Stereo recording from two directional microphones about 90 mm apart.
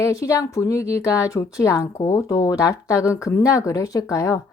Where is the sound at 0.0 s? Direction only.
35° left (ahead or behind).